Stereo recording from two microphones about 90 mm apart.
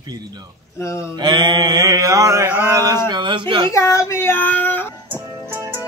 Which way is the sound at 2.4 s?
25° right (ahead or behind).